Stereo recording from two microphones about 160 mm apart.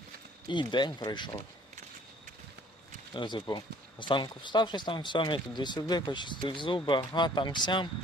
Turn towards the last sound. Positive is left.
turn(degrees=30)  # may be behind; listen again after turning